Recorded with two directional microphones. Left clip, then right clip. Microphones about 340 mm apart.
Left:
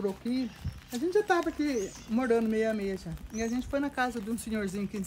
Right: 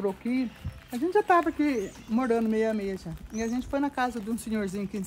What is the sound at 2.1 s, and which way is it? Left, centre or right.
Speech, centre.